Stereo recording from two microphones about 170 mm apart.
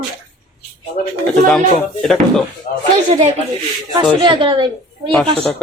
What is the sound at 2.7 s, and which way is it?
Speech, 45° left (ahead or behind).